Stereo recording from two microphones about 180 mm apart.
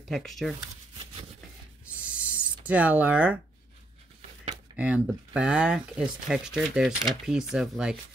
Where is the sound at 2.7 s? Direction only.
10° right (ahead or behind).